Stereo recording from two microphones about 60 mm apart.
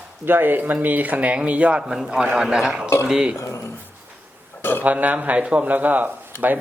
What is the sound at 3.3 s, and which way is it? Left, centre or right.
Speech, left.